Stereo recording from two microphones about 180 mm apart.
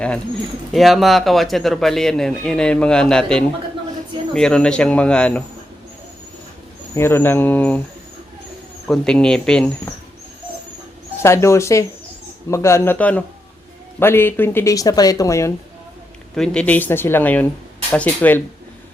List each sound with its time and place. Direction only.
0.7 s speech: centre (ahead or behind)
6.9 s speech: 15° left (ahead or behind)
8.9 s speech: 5° left (ahead or behind)
11.2 s speech: 15° left (ahead or behind)
16.3 s speech: 5° left (ahead or behind)